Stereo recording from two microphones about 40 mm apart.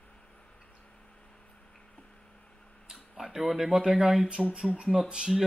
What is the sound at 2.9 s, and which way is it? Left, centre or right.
Speech, centre.